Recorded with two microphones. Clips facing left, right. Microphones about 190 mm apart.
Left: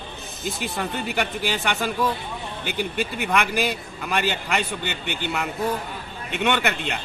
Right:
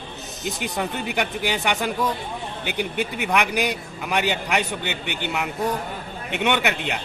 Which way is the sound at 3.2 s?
15° right (ahead or behind).